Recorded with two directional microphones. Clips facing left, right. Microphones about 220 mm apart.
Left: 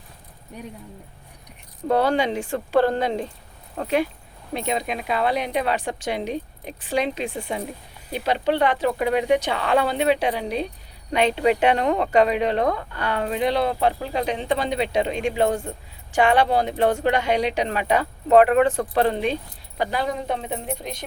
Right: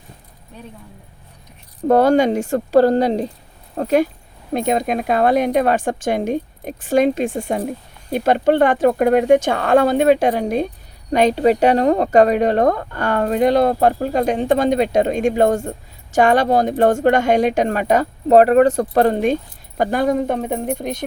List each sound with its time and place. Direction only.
1.9 s speech: 45° right (ahead or behind)